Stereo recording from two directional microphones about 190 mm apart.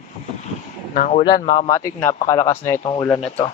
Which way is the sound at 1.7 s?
15° left (ahead or behind).